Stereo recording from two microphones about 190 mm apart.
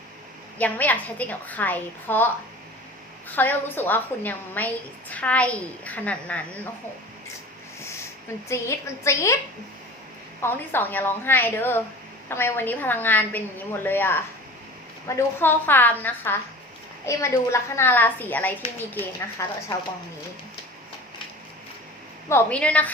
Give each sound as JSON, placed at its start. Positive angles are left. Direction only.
{"t": 0.6, "sound": "a woman's voice", "side_deg": 10}
{"t": 3.2, "sound": "a woman's voice", "side_deg": 10}
{"t": 7.8, "sound": "a sound", "side_deg": 15}
{"t": 8.4, "sound": "a woman's voice", "side_deg": 15}
{"t": 10.4, "sound": "a woman's voice", "side_deg": 10}
{"t": 22.3, "sound": "a woman's voice", "side_deg": 10}